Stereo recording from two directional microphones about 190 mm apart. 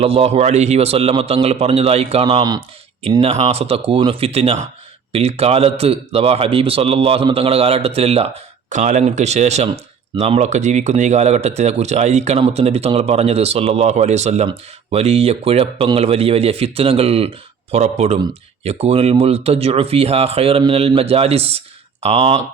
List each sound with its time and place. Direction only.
0.0 s speech: 30° right (ahead or behind)